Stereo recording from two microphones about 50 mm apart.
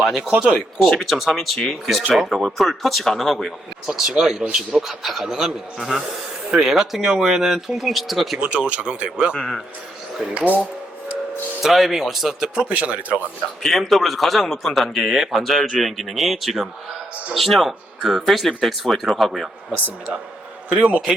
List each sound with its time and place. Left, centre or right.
0.9 s speech: centre
3.8 s a man's voice: centre
8.4 s speech: right
10.3 s speech: right
11.6 s speech: centre
12.5 s speech: right
13.6 s speech: centre
19.7 s speech: right